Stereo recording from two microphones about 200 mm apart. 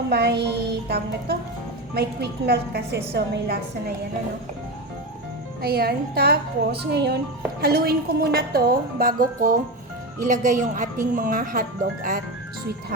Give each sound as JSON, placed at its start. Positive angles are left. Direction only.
{"t": 0.1, "sound": "a woman's voice", "side_deg": -55}
{"t": 5.6, "sound": "a woman's voice", "side_deg": -50}